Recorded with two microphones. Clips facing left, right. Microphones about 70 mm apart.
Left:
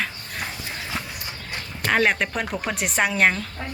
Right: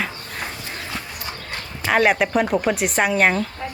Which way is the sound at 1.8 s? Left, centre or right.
Centre.